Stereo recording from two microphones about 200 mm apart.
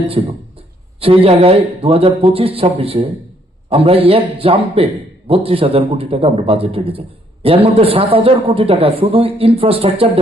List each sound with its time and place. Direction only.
0.1 s a man's voice: 30° right (ahead or behind)